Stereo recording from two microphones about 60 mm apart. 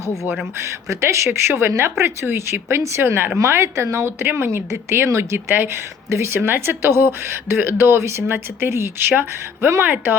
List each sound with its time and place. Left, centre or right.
0.5 s speech: right
3.3 s speech: right